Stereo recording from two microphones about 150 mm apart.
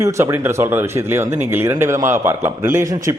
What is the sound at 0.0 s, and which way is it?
A man's voice, 20° right (ahead or behind).